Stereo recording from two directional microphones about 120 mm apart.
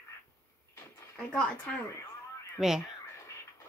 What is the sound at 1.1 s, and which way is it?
Speech, 10° left (ahead or behind).